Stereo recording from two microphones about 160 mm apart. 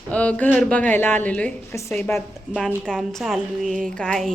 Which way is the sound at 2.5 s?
5° right (ahead or behind).